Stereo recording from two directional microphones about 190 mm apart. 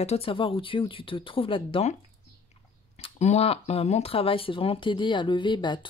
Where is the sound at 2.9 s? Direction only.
30° left (ahead or behind).